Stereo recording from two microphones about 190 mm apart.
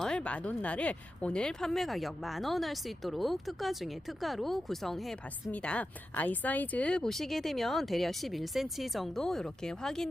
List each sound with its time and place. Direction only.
0.0 s speech: 5° left (ahead or behind)